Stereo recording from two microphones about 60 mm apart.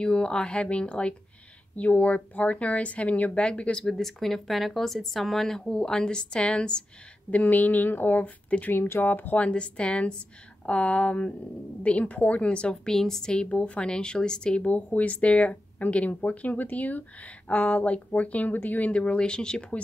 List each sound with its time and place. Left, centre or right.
0.0 s speech: centre
3.8 s speech: centre; by 8.7 s left
8.7 s speech: left; by 12.9 s centre
12.9 s speech: centre
14.7 s speech: left